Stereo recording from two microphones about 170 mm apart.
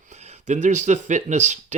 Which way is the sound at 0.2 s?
40° right (ahead or behind).